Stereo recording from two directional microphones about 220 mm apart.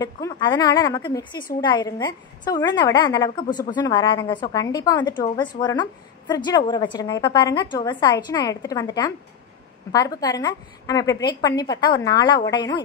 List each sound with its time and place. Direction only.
0.0 s a woman's voice: 20° left (ahead or behind)